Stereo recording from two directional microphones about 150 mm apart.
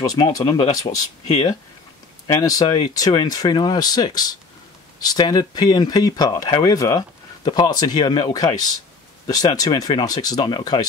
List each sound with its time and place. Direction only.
0.0 s speech: 25° left (ahead or behind)
0.9 s speech: 45° left (ahead or behind)
2.4 s speech: 25° left (ahead or behind)